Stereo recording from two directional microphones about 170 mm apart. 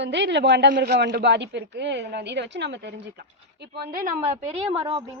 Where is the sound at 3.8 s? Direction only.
60° right (ahead or behind).